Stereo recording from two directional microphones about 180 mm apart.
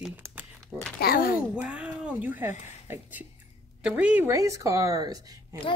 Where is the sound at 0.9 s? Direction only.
55° left (ahead or behind).